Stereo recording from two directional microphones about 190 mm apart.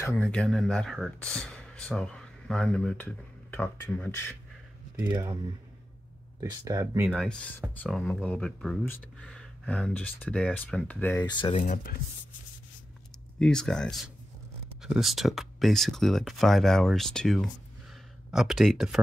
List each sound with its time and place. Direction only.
0.0 s speech: 5° left (ahead or behind)
5.0 s speech: 20° right (ahead or behind)
7.1 s speech: 5° left (ahead or behind)
11.2 s speech: 25° left (ahead or behind)
11.5 s speech: 40° left (ahead or behind)
13.4 s speech: 5° left (ahead or behind)